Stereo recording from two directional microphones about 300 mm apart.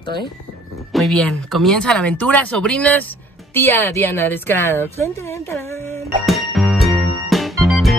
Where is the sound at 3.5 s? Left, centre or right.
Centre.